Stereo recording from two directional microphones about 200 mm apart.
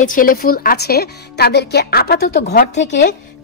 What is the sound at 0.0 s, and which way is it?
Speech, 45° left (ahead or behind).